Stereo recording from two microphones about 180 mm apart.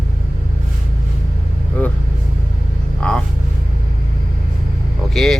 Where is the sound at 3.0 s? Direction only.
5° left (ahead or behind).